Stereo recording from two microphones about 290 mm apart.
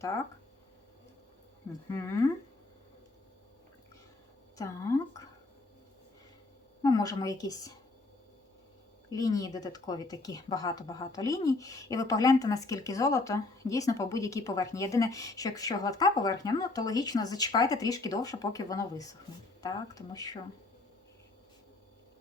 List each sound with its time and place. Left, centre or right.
1.9 s speech: centre
4.5 s speech: centre
6.8 s speech: centre
9.1 s speech: centre